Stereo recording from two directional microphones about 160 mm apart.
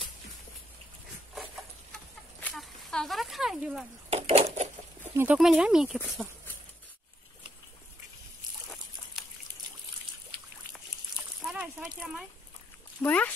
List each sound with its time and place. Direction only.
1.3 s a sound: centre (ahead or behind)
4.1 s bird: 40° right (ahead or behind)
5.0 s speech: 15° right (ahead or behind)
9.1 s trickle: 5° right (ahead or behind)
11.4 s a sound: 5° right (ahead or behind)
13.0 s speech: 10° left (ahead or behind)